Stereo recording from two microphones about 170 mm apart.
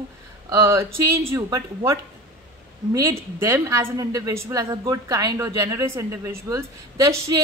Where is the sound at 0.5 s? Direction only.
15° right (ahead or behind).